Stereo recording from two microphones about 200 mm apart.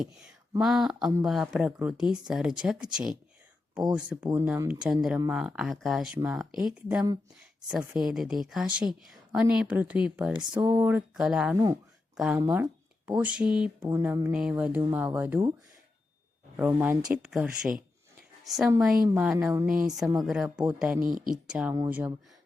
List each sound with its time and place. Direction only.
0.0 s a woman's voice: 5° right (ahead or behind)
11.5 s speech: 20° right (ahead or behind)
12.1 s speech: 5° right (ahead or behind)
12.4 s speech: 15° right (ahead or behind)
16.6 s a woman's voice: 10° right (ahead or behind)
21.0 s speech: 45° right (ahead or behind)
21.5 s a woman's voice: 5° right (ahead or behind)